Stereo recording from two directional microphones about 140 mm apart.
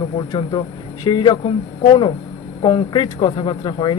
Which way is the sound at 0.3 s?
35° left (ahead or behind).